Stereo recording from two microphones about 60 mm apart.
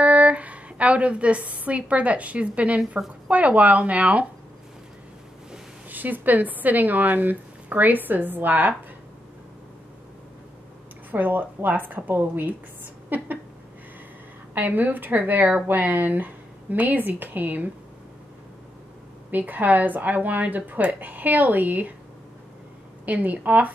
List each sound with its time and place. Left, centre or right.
0.0 s a woman's voice: right
5.9 s speech: right
11.1 s speech: right
14.5 s speech: right
19.3 s speech: right
23.0 s speech: right